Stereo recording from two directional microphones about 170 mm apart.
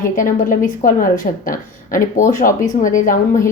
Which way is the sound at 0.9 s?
50° left (ahead or behind).